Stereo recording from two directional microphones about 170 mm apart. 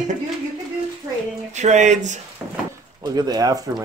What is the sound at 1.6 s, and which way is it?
Speech, 45° right (ahead or behind).